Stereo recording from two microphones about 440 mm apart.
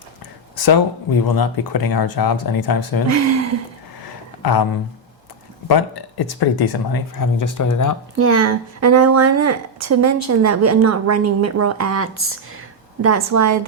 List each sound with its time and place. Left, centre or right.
1.2 s speech: left
3.1 s speech: right
5.6 s speech: left
8.1 s a woman's voice: right